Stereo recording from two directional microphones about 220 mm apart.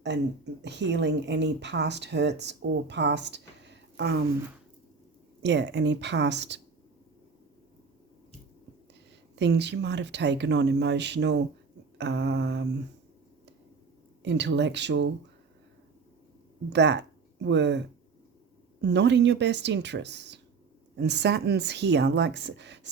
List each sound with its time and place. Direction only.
0.0 s speech: 50° right (ahead or behind)
5.4 s speech: 50° right (ahead or behind)
9.3 s speech: 50° right (ahead or behind)
14.2 s speech: 50° right (ahead or behind)
16.6 s speech: 50° right (ahead or behind)